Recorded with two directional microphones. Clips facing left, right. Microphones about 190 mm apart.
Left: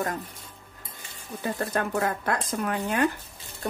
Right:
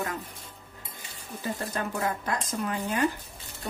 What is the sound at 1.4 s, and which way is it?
Speech, 60° left (ahead or behind).